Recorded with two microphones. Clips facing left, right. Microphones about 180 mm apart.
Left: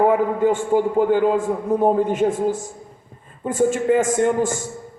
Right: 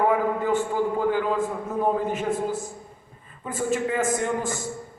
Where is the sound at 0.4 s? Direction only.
45° left (ahead or behind).